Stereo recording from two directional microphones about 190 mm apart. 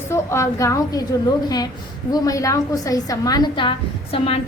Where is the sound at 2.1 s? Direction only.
20° left (ahead or behind).